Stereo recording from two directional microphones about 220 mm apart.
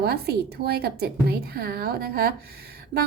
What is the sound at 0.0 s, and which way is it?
A woman's voice, 45° right (ahead or behind).